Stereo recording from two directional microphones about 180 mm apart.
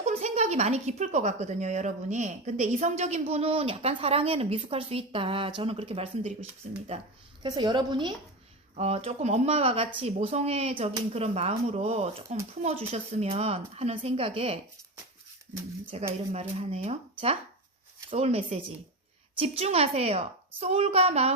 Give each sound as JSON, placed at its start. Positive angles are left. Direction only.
{"t": 0.0, "sound": "a woman's voice", "side_deg": -35}
{"t": 7.4, "sound": "a woman's voice", "side_deg": -25}
{"t": 8.7, "sound": "a woman's voice", "side_deg": -35}
{"t": 15.9, "sound": "a woman's voice", "side_deg": -35}